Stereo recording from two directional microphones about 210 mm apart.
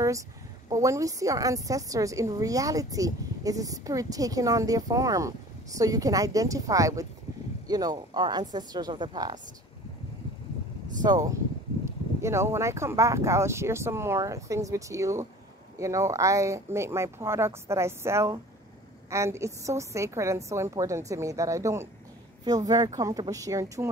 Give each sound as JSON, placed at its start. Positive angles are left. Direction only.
{"t": 0.7, "sound": "a woman's voice", "side_deg": -15}
{"t": 11.1, "sound": "a woman's voice", "side_deg": -15}